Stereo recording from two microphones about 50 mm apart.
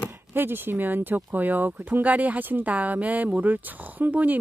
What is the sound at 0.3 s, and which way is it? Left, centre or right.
Speech, right.